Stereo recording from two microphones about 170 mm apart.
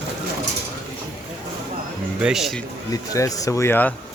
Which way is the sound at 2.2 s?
5° right (ahead or behind).